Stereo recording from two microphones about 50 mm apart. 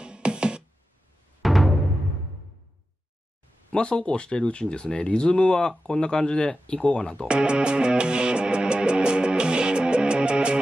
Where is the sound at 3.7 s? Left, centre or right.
Left.